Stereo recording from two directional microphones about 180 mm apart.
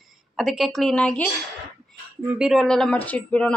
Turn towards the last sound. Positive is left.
turn(degrees=5)  # may be behind; listen again after turning